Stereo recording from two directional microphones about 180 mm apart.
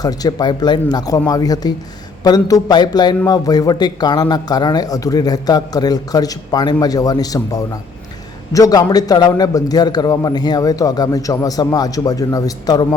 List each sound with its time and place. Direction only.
0.0 s speech: 20° left (ahead or behind)